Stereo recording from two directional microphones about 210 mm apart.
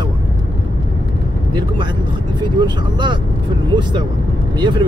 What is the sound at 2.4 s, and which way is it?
Speech, 20° right (ahead or behind).